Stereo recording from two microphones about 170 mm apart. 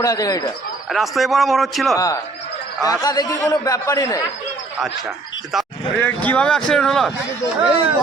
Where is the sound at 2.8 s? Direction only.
20° left (ahead or behind).